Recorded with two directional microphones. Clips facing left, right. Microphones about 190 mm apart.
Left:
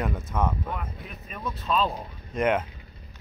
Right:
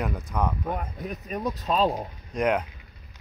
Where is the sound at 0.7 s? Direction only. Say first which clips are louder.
Right 4 dB; 45° right (ahead or behind).